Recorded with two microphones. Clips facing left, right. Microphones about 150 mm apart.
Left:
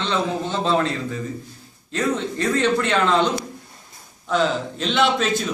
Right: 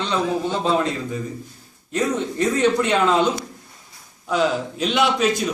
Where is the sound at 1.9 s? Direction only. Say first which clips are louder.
Right 1 dB; 15° right (ahead or behind).